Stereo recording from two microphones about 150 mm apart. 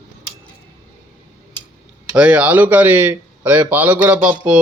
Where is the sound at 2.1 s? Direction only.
10° right (ahead or behind).